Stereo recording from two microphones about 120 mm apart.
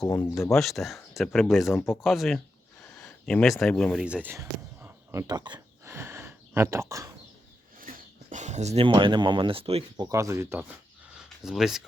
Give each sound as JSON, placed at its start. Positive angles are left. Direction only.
{"t": 0.0, "sound": "speech", "side_deg": 20}
{"t": 0.5, "sound": "speech", "side_deg": 0}
{"t": 2.8, "sound": "a sound", "side_deg": 10}
{"t": 3.6, "sound": "speech", "side_deg": 5}
{"t": 3.9, "sound": "speech", "side_deg": -10}
{"t": 4.4, "sound": "a sound", "side_deg": -25}
{"t": 8.3, "sound": "speech", "side_deg": -80}
{"t": 8.8, "sound": "speech", "side_deg": -45}
{"t": 10.0, "sound": "speech", "side_deg": -25}
{"t": 11.1, "sound": "a sound", "side_deg": -5}